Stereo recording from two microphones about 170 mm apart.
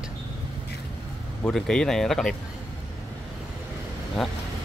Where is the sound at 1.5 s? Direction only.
5° left (ahead or behind).